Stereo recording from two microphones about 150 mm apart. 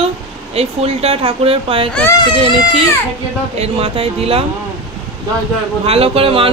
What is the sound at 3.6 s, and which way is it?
Speech, 40° right (ahead or behind).